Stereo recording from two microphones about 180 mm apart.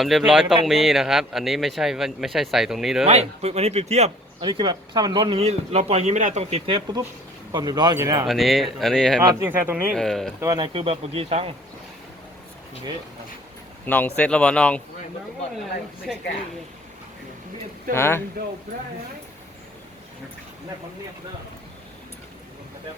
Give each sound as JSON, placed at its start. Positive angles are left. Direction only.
{"t": 0.0, "sound": "speech", "side_deg": 0}
{"t": 3.1, "sound": "speech", "side_deg": -35}
{"t": 8.3, "sound": "speech", "side_deg": 0}
{"t": 9.2, "sound": "speech", "side_deg": -15}
{"t": 9.9, "sound": "speech", "side_deg": 0}
{"t": 10.4, "sound": "speech", "side_deg": -20}
{"t": 13.8, "sound": "speech", "side_deg": 10}
{"t": 16.1, "sound": "speech", "side_deg": 0}
{"t": 17.9, "sound": "speech", "side_deg": 15}